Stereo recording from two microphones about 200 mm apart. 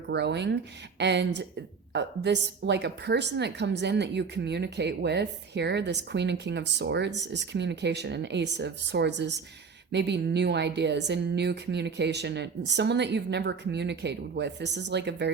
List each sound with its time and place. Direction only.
0.1 s a woman's voice: 60° right (ahead or behind)